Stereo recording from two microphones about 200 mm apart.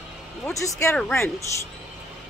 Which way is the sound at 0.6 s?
15° left (ahead or behind).